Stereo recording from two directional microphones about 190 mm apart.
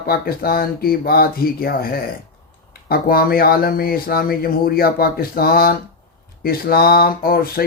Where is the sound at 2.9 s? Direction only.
50° left (ahead or behind).